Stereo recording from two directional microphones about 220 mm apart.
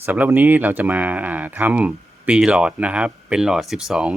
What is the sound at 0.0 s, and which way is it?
Speech, 10° right (ahead or behind).